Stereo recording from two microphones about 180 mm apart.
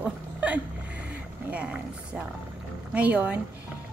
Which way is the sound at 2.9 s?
5° right (ahead or behind).